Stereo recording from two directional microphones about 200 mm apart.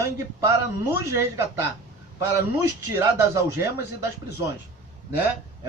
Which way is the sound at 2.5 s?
15° right (ahead or behind).